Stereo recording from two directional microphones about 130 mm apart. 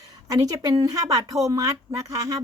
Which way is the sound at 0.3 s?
25° right (ahead or behind).